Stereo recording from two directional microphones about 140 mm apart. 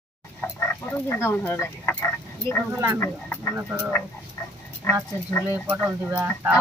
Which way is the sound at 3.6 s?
15° right (ahead or behind).